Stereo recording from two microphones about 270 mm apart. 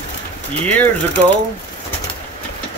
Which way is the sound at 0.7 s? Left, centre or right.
Centre.